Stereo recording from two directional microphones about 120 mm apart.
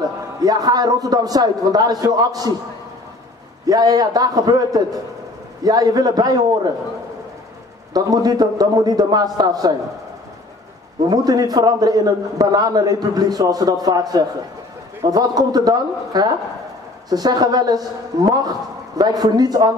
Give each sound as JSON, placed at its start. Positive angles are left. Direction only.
{"t": 0.4, "sound": "a man's voice", "side_deg": -30}
{"t": 3.6, "sound": "a man's voice", "side_deg": -30}
{"t": 7.9, "sound": "a man's voice", "side_deg": -30}
{"t": 11.1, "sound": "a man's voice", "side_deg": -30}